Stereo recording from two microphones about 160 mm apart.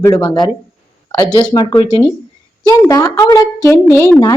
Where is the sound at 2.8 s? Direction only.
20° left (ahead or behind).